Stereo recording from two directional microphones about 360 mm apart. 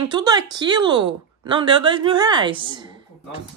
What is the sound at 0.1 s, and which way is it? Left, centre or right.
Speech, centre.